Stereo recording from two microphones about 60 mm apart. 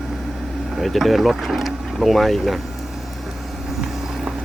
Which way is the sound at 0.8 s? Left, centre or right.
Centre.